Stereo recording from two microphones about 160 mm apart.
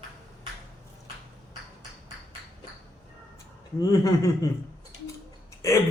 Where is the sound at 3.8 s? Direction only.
20° left (ahead or behind).